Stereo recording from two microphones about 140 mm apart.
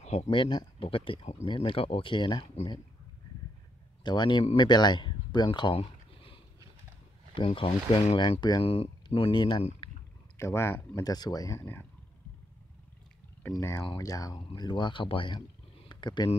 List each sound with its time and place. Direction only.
0.0 s a sound: 50° left (ahead or behind)
0.3 s speech: 35° left (ahead or behind)
4.0 s speech: 30° left (ahead or behind)
10.3 s speech: 20° left (ahead or behind)
13.5 s speech: 20° left (ahead or behind)
15.9 s a sound: 30° left (ahead or behind)